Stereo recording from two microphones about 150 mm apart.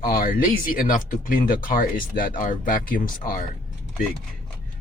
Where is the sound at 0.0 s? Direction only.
80° left.